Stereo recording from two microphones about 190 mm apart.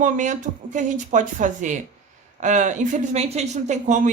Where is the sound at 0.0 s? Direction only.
40° right (ahead or behind).